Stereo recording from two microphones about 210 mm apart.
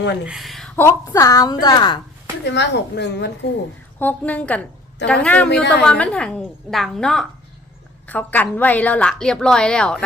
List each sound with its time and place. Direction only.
0.3 s a woman's voice: centre (ahead or behind); by 2.0 s 20° left (ahead or behind)
2.4 s speech: 55° left (ahead or behind)
4.0 s a woman's voice: 5° left (ahead or behind)